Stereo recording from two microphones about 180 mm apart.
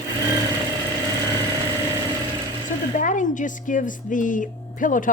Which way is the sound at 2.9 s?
45° left (ahead or behind).